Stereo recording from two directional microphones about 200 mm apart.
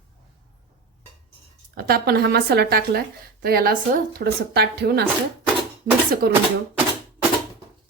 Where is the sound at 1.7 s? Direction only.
50° right (ahead or behind).